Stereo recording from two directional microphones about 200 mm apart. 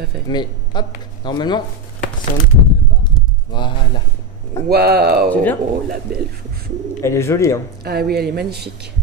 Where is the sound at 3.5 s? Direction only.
20° left (ahead or behind).